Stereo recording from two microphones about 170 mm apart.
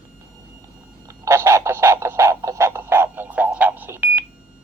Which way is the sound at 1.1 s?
15° right (ahead or behind).